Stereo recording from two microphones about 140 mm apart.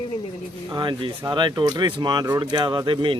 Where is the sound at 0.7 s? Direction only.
30° right (ahead or behind).